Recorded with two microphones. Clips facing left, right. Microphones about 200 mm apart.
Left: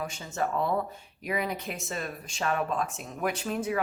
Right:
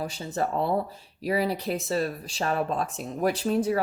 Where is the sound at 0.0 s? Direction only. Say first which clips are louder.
Right 3 dB; 35° right (ahead or behind).